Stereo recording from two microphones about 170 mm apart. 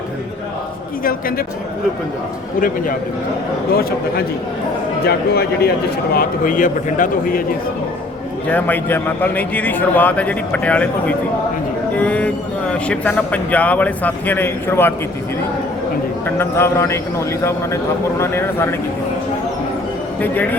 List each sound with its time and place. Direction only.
2.6 s a man's voice: 55° left (ahead or behind)
3.8 s a man's voice: 65° left (ahead or behind)
6.1 s a man's voice: 55° left (ahead or behind)
8.4 s speech: 10° left (ahead or behind)
16.4 s speech: 15° left (ahead or behind)
18.2 s speech: 15° left (ahead or behind)
20.2 s speech: 10° left (ahead or behind)